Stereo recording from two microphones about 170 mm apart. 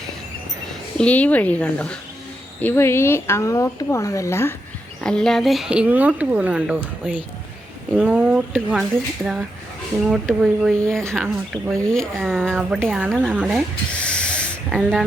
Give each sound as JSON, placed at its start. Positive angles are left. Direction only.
{"t": 0.7, "sound": "speech", "side_deg": 5}
{"t": 4.9, "sound": "speech", "side_deg": 5}
{"t": 10.0, "sound": "speech", "side_deg": 0}
{"t": 13.1, "sound": "speech", "side_deg": -10}
{"t": 13.4, "sound": "owl", "side_deg": 0}
{"t": 14.7, "sound": "speech", "side_deg": -5}